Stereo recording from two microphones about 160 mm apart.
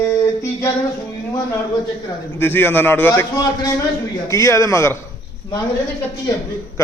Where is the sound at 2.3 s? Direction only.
15° left (ahead or behind).